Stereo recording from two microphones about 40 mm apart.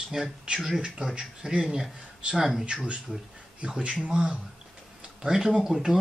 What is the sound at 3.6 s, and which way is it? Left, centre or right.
Speech, right.